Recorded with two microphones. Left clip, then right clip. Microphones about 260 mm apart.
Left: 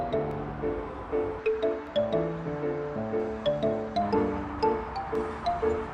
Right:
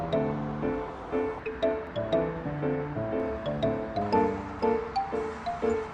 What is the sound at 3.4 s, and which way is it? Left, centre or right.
Music, centre.